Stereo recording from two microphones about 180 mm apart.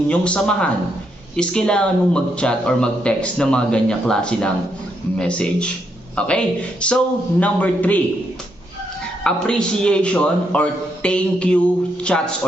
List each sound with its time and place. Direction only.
0.1 s a man's voice: 5° left (ahead or behind)
9.2 s speech: 5° left (ahead or behind)